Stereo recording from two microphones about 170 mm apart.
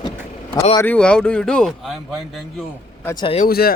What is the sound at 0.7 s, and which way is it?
Speech, 10° left (ahead or behind).